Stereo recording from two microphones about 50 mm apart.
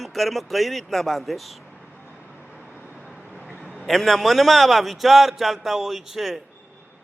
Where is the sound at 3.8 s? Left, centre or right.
Centre.